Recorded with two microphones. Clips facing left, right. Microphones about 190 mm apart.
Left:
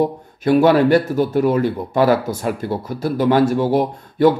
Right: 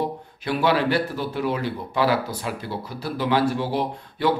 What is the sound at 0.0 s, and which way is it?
A man's voice, 45° left (ahead or behind).